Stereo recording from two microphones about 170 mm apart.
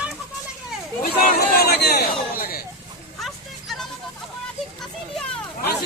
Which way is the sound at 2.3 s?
60° left (ahead or behind).